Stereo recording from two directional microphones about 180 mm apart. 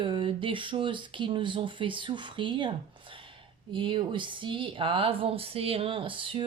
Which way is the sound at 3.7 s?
30° right (ahead or behind).